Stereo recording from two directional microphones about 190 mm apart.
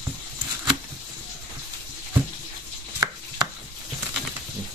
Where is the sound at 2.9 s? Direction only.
15° right (ahead or behind).